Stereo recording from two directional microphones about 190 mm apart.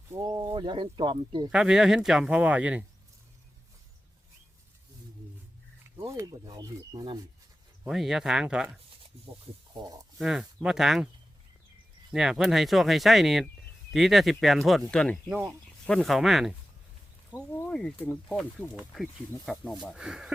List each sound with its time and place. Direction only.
0.1 s speech: 20° right (ahead or behind)
1.5 s speech: 5° right (ahead or behind)
6.0 s speech: 15° right (ahead or behind)
7.9 s speech: centre (ahead or behind)
9.7 s speech: 20° right (ahead or behind)
10.2 s speech: 5° right (ahead or behind)
12.1 s speech: 5° right (ahead or behind)